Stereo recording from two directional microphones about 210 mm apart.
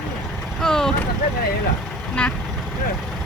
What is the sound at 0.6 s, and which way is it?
Speech, 5° left (ahead or behind).